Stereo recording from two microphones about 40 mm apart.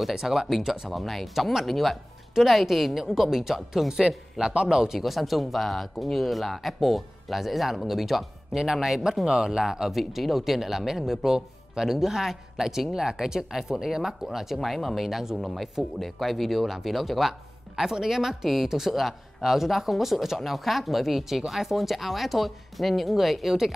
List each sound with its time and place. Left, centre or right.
0.1 s speech: centre
0.9 s speech: centre
4.9 s speech: centre